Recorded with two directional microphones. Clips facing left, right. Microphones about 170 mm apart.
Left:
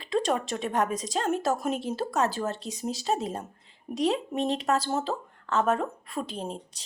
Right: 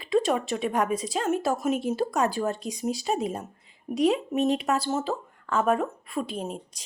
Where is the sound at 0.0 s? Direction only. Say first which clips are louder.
Right 3 dB; 10° right (ahead or behind).